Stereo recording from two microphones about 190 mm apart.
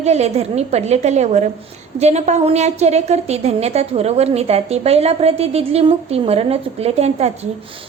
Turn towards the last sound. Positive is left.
turn(degrees=-35)  # may be behind; listen again after turning